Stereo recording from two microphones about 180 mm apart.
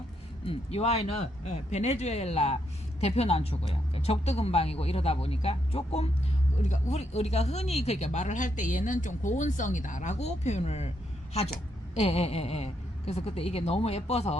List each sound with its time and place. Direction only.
0.4 s speech: 35° left (ahead or behind)
11.9 s speech: 35° left (ahead or behind)